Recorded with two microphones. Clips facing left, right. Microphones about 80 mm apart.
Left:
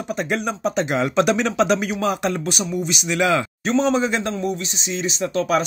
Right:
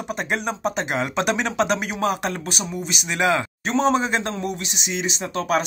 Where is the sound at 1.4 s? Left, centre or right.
Right.